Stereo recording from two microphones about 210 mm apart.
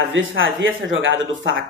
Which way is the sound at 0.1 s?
65° right (ahead or behind).